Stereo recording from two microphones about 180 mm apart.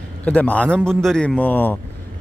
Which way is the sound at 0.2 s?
10° left (ahead or behind).